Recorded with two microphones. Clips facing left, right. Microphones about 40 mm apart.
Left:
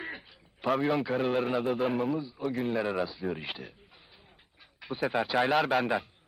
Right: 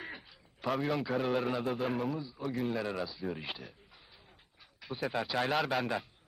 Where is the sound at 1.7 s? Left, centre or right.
Centre.